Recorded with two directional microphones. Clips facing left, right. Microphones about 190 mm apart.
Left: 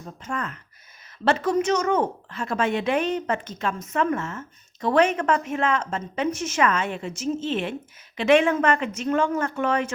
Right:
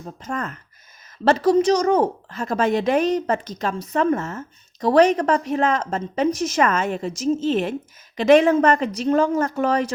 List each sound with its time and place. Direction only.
0.0 s a woman's voice: 40° right (ahead or behind)